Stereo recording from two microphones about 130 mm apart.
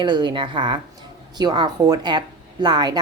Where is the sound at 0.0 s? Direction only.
35° right (ahead or behind).